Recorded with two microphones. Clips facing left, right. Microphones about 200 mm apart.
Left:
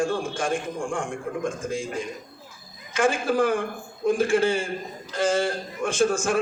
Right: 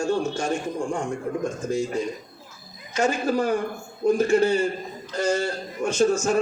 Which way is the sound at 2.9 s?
50° left (ahead or behind).